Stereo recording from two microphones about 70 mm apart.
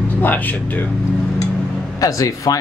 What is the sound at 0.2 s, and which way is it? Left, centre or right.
Speech, left.